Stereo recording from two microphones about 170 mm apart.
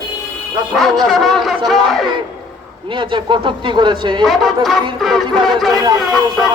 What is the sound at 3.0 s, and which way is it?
Speech, 30° right (ahead or behind).